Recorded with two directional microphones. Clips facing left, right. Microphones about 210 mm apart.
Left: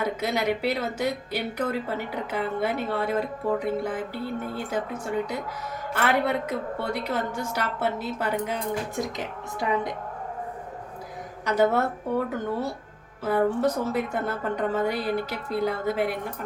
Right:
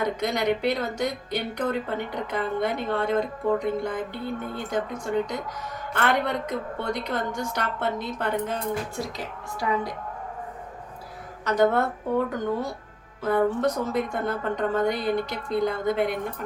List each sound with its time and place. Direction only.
0.0 s speech: 5° left (ahead or behind)
9.0 s a woman's voice: 20° left (ahead or behind)
11.4 s speech: 5° left (ahead or behind)